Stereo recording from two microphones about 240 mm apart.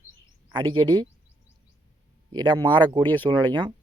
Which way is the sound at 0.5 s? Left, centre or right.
Centre.